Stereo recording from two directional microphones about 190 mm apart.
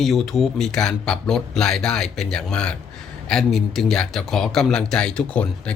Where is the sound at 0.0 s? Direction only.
Centre (ahead or behind).